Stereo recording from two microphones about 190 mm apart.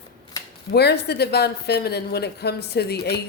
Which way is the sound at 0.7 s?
60° left (ahead or behind).